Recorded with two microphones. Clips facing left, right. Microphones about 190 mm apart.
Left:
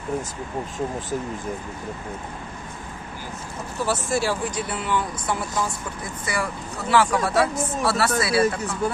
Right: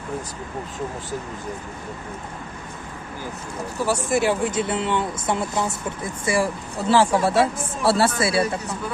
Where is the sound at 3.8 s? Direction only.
15° right (ahead or behind).